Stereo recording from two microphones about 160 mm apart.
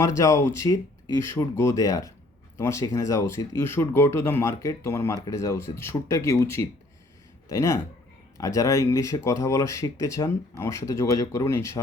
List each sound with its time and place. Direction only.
0.0 s speech: 20° left (ahead or behind)